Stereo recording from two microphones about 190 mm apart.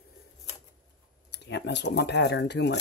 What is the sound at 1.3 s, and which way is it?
Speech, 65° left (ahead or behind).